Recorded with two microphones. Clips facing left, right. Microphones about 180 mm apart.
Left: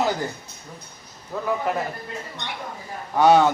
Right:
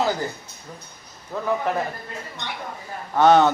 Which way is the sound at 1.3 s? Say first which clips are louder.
Even; 10° left (ahead or behind).